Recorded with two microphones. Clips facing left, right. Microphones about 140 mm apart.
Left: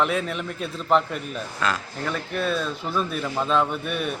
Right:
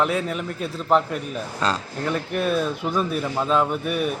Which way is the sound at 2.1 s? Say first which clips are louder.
Right 3 dB; 10° right (ahead or behind).